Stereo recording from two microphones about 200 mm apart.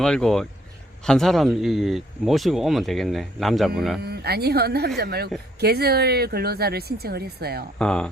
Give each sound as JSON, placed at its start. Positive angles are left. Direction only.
{"t": 0.0, "sound": "speech", "side_deg": 5}
{"t": 4.0, "sound": "speech", "side_deg": -50}
{"t": 7.8, "sound": "speech", "side_deg": 5}